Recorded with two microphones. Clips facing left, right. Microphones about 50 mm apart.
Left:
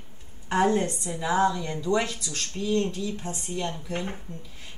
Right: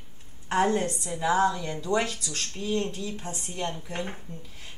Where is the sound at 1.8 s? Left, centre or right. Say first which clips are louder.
Left 1 dB; right.